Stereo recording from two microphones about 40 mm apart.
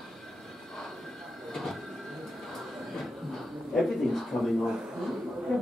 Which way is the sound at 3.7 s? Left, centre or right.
Centre.